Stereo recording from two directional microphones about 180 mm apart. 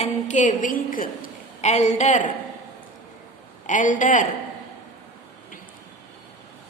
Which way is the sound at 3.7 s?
45° left (ahead or behind).